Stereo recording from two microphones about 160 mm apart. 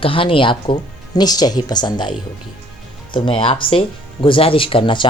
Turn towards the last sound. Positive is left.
turn(degrees=30)  # may be behind; listen again after turning